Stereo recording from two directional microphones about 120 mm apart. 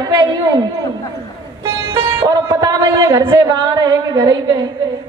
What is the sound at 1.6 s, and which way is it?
Music, 25° right (ahead or behind).